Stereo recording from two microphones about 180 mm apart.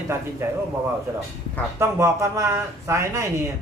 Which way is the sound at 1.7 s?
15° right (ahead or behind).